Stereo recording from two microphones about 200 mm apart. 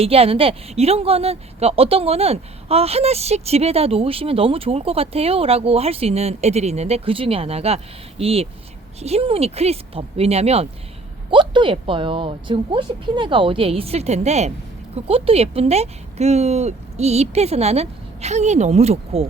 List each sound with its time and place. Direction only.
0.0 s speech: 30° right (ahead or behind)